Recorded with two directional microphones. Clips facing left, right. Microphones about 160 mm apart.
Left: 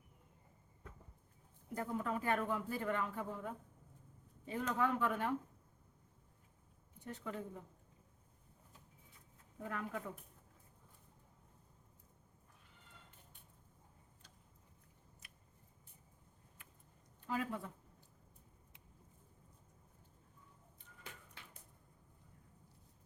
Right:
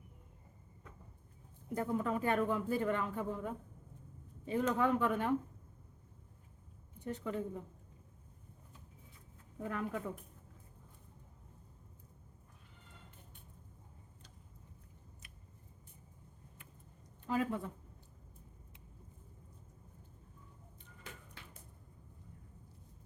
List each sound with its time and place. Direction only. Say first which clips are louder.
1.7 s speech: right 5 dB; 25° right (ahead or behind)
7.0 s speech: right 6 dB; 20° right (ahead or behind)
9.6 s speech: right 4 dB; 25° right (ahead or behind)
17.2 s a woman's voice: right 5 dB; 25° right (ahead or behind)